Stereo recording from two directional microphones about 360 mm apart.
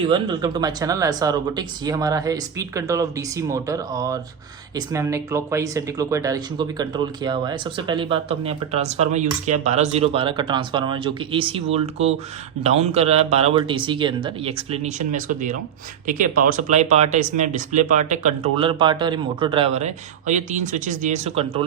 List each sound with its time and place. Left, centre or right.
0.0 s speech: centre